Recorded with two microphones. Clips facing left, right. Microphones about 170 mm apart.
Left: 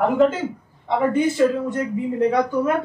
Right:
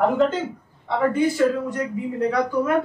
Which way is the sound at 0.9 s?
20° left (ahead or behind).